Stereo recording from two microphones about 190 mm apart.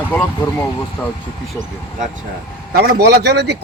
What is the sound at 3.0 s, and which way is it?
Speech, 60° right (ahead or behind).